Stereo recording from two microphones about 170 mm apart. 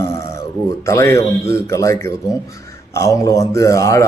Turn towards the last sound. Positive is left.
turn(degrees=20)  # may be behind; listen again after turning